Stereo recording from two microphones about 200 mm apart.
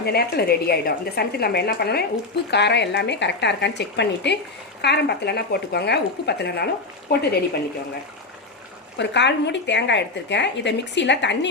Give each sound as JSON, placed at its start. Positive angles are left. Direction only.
{"t": 0.0, "sound": "a woman's voice", "side_deg": 55}
{"t": 9.0, "sound": "a woman's voice", "side_deg": 60}